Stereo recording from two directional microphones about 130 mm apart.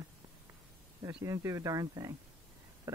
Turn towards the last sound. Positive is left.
turn(degrees=-25)  # may be behind; listen again after turning